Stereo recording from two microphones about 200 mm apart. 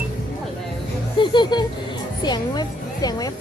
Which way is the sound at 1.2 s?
25° left (ahead or behind).